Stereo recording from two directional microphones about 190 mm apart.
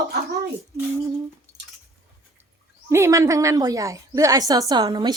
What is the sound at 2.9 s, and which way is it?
Speech, 15° right (ahead or behind).